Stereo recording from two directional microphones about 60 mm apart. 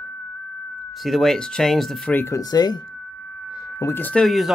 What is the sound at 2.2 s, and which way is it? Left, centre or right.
Speech, left.